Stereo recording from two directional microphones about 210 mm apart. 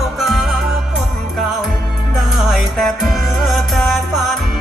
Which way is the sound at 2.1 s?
Centre (ahead or behind).